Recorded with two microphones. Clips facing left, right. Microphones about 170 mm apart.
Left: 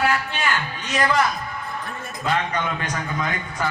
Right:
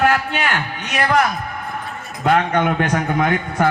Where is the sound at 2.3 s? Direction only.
60° right (ahead or behind).